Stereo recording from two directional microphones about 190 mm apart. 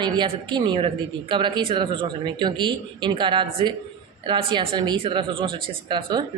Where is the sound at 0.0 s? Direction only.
25° right (ahead or behind).